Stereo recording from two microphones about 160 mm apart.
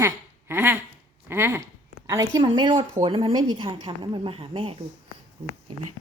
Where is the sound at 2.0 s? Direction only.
20° right (ahead or behind).